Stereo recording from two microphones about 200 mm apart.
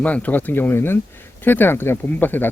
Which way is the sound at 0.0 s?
10° left (ahead or behind).